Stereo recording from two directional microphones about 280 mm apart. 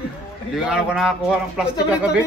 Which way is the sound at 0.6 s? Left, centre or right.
Centre.